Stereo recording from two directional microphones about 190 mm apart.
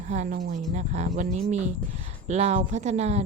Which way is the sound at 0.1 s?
40° right (ahead or behind).